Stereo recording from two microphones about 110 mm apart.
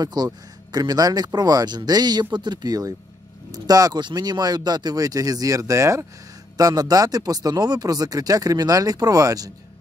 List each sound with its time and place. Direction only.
0.0 s speech: 40° right (ahead or behind)